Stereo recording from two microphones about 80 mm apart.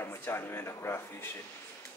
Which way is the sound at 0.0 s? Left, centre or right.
Left.